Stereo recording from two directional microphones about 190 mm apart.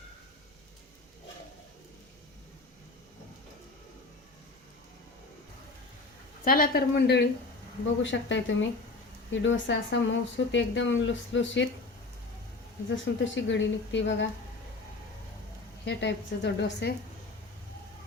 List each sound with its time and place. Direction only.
6.4 s a woman's voice: 50° left (ahead or behind)
8.0 s speech: 70° left (ahead or behind)
13.1 s speech: 70° left (ahead or behind)
15.8 s a woman's voice: 65° left (ahead or behind)